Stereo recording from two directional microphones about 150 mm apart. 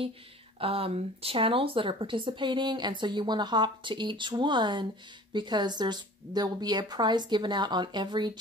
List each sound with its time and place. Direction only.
0.6 s a woman's voice: 40° right (ahead or behind)